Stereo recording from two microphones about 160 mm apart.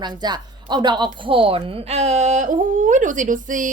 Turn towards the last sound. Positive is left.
turn(degrees=-55)  # may be behind; listen again after turning